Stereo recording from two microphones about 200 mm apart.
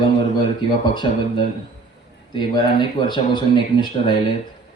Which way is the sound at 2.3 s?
25° left (ahead or behind).